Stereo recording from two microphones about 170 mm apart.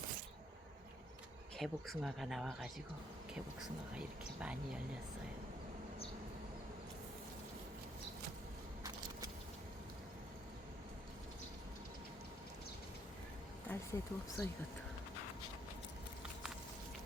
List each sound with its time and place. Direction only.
1.5 s speech: centre (ahead or behind)
13.7 s speech: 15° left (ahead or behind)